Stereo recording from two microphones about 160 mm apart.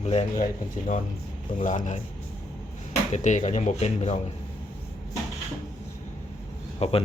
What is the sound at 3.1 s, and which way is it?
Speech, 50° left (ahead or behind).